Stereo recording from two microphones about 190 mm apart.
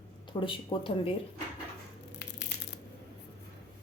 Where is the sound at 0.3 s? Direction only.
25° left (ahead or behind).